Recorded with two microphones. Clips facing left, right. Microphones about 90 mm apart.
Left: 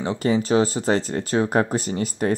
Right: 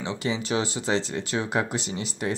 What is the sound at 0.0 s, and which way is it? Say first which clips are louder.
Speech: left 7 dB; 40° left (ahead or behind).